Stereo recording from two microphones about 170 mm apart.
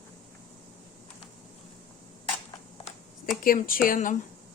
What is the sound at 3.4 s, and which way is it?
Speech, 55° left (ahead or behind).